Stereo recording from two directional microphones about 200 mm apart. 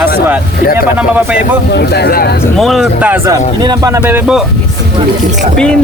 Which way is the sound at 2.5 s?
Centre (ahead or behind).